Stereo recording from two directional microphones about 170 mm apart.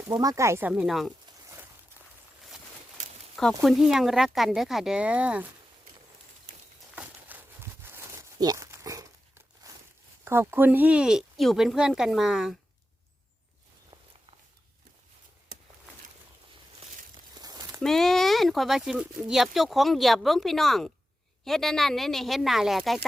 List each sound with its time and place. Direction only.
0.2 s speech: 20° right (ahead or behind); by 1.1 s centre (ahead or behind)
3.3 s speech: centre (ahead or behind)
6.9 s a sound: 10° right (ahead or behind)
10.2 s speech: 15° right (ahead or behind)
17.3 s a sound: 25° right (ahead or behind)
17.7 s speech: centre (ahead or behind)